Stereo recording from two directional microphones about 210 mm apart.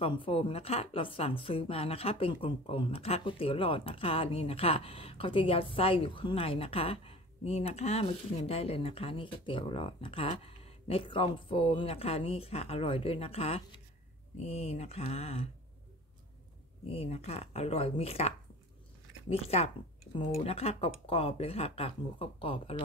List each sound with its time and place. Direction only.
0.0 s a woman's voice: 25° left (ahead or behind)
16.8 s a woman's voice: 30° left (ahead or behind)